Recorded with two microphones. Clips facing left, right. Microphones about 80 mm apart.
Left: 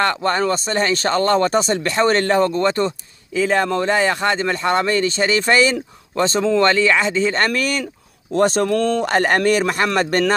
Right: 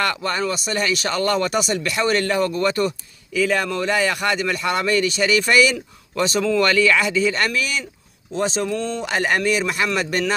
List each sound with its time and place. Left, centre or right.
0.0 s speech: left